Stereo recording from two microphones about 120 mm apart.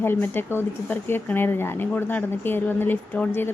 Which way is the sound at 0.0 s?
20° left (ahead or behind).